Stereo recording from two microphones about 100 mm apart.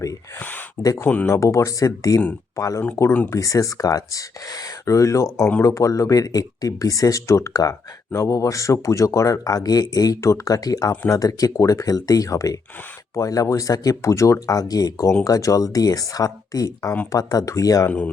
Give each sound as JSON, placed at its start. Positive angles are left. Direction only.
{"t": 0.3, "sound": "speech", "side_deg": 15}
{"t": 0.8, "sound": "speech", "side_deg": 35}
{"t": 1.0, "sound": "speech", "side_deg": 15}
{"t": 1.3, "sound": "speech", "side_deg": 30}
{"t": 2.8, "sound": "speech", "side_deg": 20}
{"t": 3.2, "sound": "speech", "side_deg": 35}
{"t": 17.8, "sound": "speech", "side_deg": 15}